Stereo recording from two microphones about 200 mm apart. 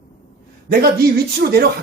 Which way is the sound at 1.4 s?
50° right (ahead or behind).